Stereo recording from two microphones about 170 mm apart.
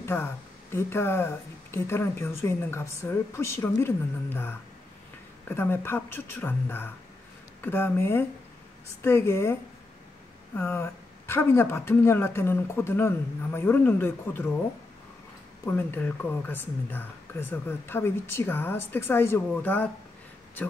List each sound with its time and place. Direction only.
0.0 s speech: 15° left (ahead or behind)
15.6 s speech: 10° left (ahead or behind)